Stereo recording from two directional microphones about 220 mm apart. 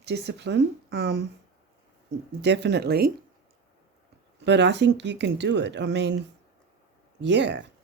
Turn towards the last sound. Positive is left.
turn(degrees=-55)  # may be behind; listen again after turning